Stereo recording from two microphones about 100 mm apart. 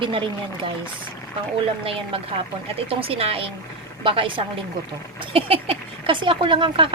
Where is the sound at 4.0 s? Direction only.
60° right (ahead or behind).